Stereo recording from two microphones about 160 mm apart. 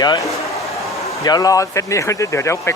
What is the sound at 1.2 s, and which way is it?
Speech, 25° left (ahead or behind).